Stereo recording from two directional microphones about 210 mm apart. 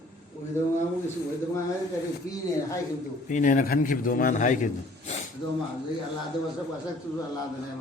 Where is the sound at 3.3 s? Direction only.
40° left (ahead or behind).